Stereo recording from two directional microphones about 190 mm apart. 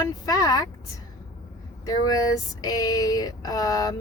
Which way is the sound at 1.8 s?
20° left (ahead or behind).